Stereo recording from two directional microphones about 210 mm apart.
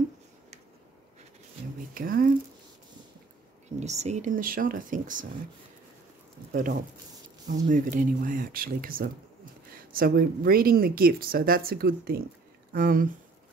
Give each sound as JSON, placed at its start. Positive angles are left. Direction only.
{"t": 2.0, "sound": "speech", "side_deg": -40}
{"t": 3.8, "sound": "speech", "side_deg": -30}
{"t": 6.5, "sound": "speech", "side_deg": -40}